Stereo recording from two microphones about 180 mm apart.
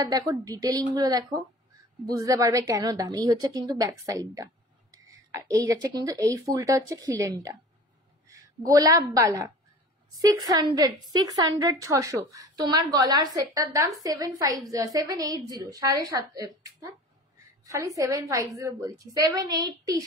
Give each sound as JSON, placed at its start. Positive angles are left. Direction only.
{"t": 0.0, "sound": "a woman's voice", "side_deg": -20}